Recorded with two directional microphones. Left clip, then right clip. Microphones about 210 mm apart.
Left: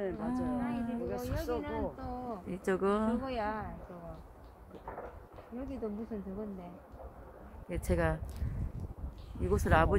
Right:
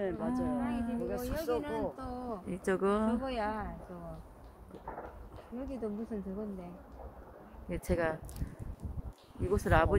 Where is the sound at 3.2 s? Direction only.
55° right (ahead or behind).